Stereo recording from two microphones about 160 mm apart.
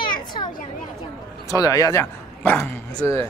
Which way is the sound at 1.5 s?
20° left (ahead or behind).